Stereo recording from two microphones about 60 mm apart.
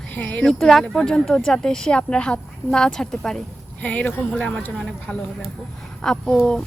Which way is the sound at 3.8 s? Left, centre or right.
Left.